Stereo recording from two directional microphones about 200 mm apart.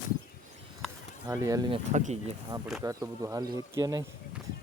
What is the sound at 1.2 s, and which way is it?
Speech, 15° right (ahead or behind).